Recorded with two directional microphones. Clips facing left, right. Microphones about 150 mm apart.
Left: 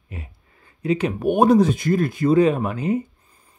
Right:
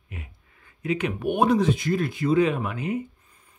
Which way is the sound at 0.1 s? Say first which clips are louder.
Left 4 dB; 35° left (ahead or behind).